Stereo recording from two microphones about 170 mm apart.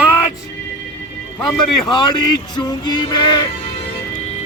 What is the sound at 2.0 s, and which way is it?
Speech, 25° left (ahead or behind).